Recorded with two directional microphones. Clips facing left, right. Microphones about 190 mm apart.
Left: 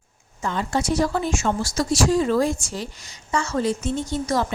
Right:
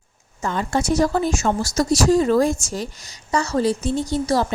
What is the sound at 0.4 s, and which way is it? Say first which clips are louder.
A woman's voice: right 2 dB; 45° right (ahead or behind).